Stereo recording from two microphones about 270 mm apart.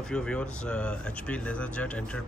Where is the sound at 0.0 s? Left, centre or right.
Centre.